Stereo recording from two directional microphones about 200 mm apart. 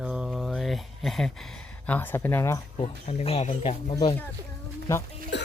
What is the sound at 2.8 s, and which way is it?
Speech, 30° left (ahead or behind).